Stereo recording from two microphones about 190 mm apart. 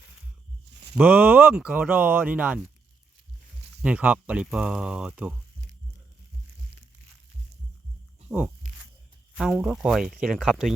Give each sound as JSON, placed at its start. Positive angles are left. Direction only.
{"t": 0.9, "sound": "speech", "side_deg": -5}
{"t": 3.8, "sound": "speech", "side_deg": -5}
{"t": 8.3, "sound": "speech", "side_deg": -15}
{"t": 9.4, "sound": "speech", "side_deg": -5}